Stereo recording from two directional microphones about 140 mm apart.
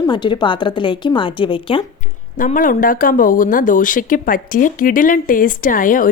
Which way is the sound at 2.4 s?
75° left (ahead or behind).